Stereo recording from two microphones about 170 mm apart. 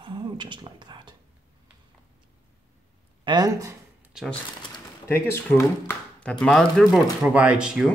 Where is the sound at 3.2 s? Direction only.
25° right (ahead or behind).